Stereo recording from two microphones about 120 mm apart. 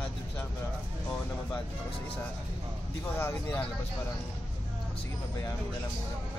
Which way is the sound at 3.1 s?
20° left (ahead or behind).